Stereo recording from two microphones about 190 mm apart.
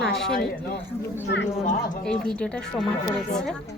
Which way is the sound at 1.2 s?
70° left (ahead or behind).